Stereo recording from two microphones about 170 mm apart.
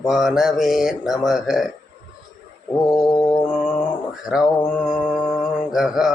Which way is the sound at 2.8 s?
20° left (ahead or behind).